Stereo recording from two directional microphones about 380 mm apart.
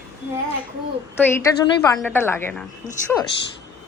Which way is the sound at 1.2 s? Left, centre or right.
Centre.